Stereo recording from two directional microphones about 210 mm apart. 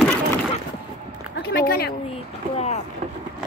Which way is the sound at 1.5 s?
50° left (ahead or behind).